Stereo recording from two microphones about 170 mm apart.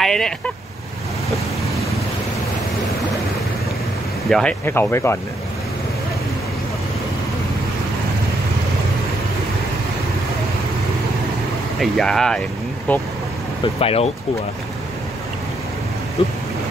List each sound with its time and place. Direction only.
0.0 s vehicle: centre (ahead or behind)
4.3 s speech: 5° left (ahead or behind)
11.8 s speech: 5° left (ahead or behind)
13.7 s speech: 35° left (ahead or behind)